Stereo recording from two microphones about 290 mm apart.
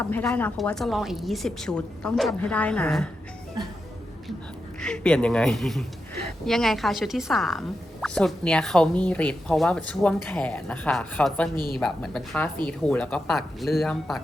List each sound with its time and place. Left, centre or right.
0.0 s a woman's voice: centre
4.8 s a woman's voice: centre
11.5 s a woman's voice: left
11.8 s a woman's voice: centre